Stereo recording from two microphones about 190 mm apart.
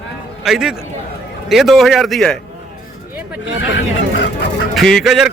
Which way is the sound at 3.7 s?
75° left (ahead or behind).